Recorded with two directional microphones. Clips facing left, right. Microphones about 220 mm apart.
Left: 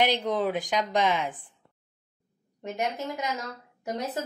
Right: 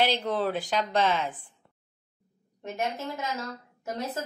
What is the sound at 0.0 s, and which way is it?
A woman's voice, 15° left (ahead or behind).